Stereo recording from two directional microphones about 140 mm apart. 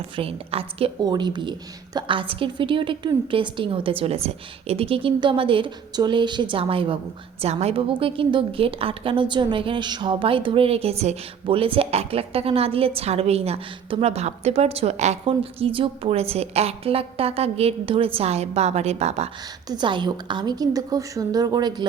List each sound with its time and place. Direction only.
0.2 s a woman's voice: 45° right (ahead or behind)
1.0 s a woman's voice: 30° right (ahead or behind); by 19.3 s 50° right (ahead or behind)
19.6 s a woman's voice: 30° right (ahead or behind)